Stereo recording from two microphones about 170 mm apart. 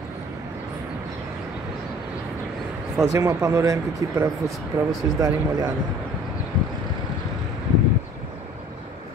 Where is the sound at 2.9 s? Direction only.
15° right (ahead or behind).